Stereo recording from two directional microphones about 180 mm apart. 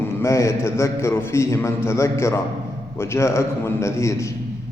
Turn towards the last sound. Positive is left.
turn(degrees=15)  # may be behind; listen again after turning